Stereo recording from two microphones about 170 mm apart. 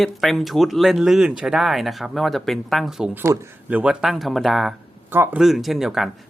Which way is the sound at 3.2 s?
15° right (ahead or behind).